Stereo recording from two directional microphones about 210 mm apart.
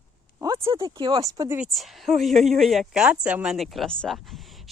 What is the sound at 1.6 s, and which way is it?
Speech, centre (ahead or behind).